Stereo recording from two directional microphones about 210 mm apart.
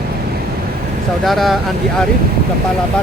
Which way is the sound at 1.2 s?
Centre (ahead or behind).